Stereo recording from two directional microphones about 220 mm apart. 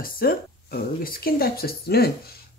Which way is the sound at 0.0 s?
40° left (ahead or behind).